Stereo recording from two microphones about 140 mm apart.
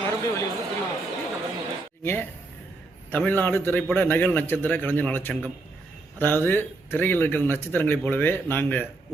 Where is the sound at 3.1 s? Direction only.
10° left (ahead or behind).